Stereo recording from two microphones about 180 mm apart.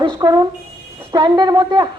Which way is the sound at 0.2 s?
25° right (ahead or behind).